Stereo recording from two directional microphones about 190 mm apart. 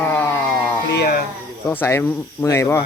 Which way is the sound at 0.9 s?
55° left (ahead or behind).